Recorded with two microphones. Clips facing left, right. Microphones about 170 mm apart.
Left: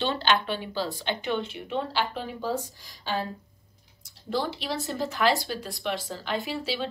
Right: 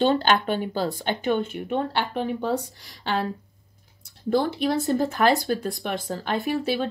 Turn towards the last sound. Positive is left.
turn(degrees=-50)  # may be behind; listen again after turning